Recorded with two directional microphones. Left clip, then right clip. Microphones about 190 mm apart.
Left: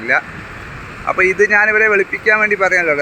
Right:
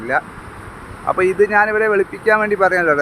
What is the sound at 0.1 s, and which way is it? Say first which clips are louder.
Speech: left 2 dB; 10° right (ahead or behind).